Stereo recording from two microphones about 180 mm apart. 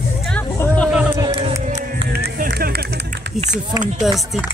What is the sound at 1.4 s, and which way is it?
Music, 40° right (ahead or behind).